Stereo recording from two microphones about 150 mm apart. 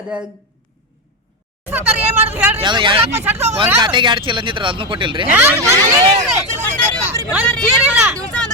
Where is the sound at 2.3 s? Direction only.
10° right (ahead or behind).